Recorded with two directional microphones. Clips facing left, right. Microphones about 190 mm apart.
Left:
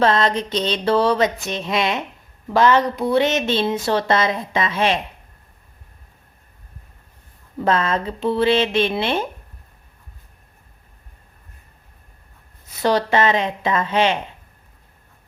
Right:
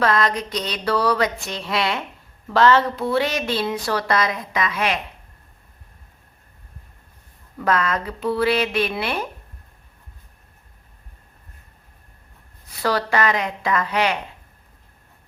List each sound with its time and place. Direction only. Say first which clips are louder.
0.0 s speech: left 3 dB; 25° left (ahead or behind)
7.6 s speech: left 2 dB; 25° left (ahead or behind)
12.8 s speech: left 3 dB; 20° left (ahead or behind)